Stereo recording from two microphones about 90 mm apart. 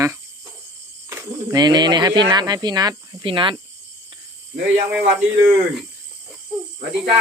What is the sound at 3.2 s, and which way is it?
Speech, 70° right (ahead or behind).